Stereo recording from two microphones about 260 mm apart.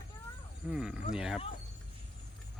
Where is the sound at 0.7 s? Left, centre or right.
Centre.